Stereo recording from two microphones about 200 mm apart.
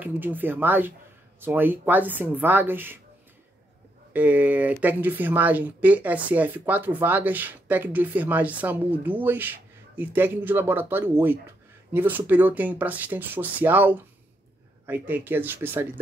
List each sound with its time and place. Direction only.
0.0 s speech: 10° right (ahead or behind)
4.1 s speech: 10° right (ahead or behind)